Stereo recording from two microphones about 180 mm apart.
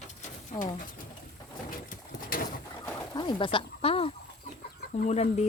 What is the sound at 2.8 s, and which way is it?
Bird, 25° left (ahead or behind).